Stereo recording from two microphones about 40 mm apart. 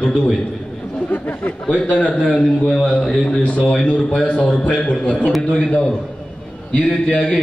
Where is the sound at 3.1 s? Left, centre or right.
Left.